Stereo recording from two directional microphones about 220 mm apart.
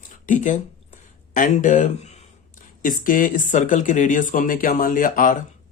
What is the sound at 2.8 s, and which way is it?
Speech, 40° left (ahead or behind).